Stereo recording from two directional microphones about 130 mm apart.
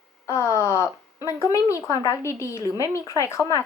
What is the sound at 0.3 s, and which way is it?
A woman's voice, 25° left (ahead or behind).